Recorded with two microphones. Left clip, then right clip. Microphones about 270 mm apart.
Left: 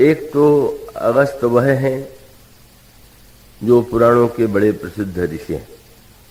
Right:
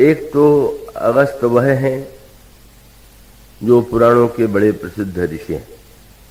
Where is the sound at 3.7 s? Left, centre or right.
Right.